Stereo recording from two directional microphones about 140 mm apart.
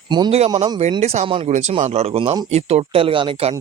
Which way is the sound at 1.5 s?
60° right (ahead or behind).